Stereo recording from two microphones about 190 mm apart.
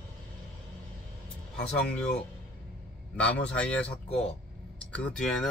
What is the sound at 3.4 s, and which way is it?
Speech, 5° left (ahead or behind).